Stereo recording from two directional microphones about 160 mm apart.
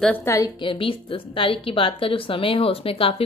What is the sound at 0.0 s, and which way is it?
Speech, 10° left (ahead or behind).